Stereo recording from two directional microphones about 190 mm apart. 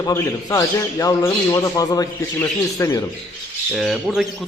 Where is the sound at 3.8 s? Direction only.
Centre (ahead or behind).